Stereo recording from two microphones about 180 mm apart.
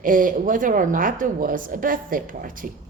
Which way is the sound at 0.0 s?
50° right (ahead or behind).